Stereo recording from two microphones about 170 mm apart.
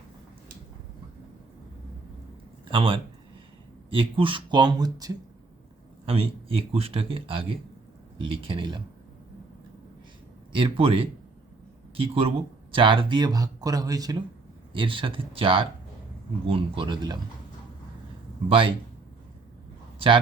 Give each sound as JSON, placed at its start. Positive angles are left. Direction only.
{"t": 2.6, "sound": "speech", "side_deg": -30}
{"t": 6.1, "sound": "a man's voice", "side_deg": -35}
{"t": 10.5, "sound": "a man's voice", "side_deg": -30}
{"t": 18.4, "sound": "a man's voice", "side_deg": -30}